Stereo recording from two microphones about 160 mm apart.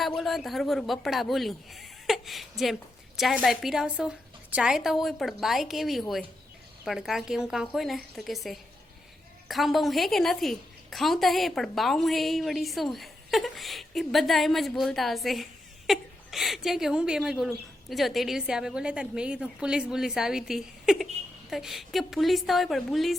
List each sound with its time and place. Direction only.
0.2 s a woman's voice: centre (ahead or behind)